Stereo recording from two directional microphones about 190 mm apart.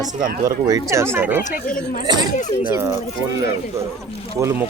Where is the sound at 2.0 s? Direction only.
20° right (ahead or behind).